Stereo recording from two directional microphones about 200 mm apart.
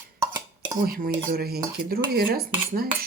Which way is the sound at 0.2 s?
20° right (ahead or behind).